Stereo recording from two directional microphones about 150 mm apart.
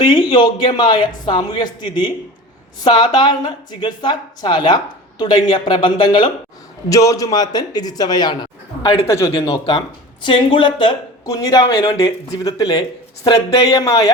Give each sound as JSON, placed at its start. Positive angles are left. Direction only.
{"t": 0.0, "sound": "a man's voice", "side_deg": 30}